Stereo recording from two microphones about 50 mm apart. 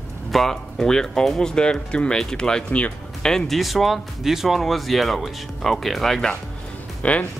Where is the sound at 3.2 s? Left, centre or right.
Centre.